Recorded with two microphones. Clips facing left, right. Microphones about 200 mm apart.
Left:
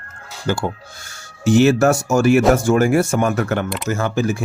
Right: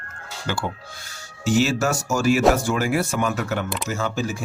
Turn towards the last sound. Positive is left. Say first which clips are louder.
# left 6 dB
turn(degrees=55)  # may be behind; listen again after turning